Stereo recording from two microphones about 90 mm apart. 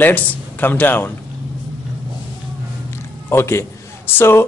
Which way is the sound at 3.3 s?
30° left (ahead or behind).